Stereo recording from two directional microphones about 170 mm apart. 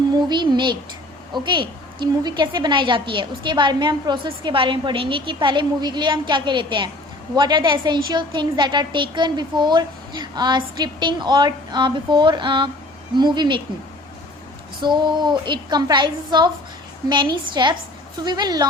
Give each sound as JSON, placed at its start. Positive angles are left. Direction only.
{"t": 0.1, "sound": "a woman's voice", "side_deg": -25}
{"t": 14.8, "sound": "a woman's voice", "side_deg": -25}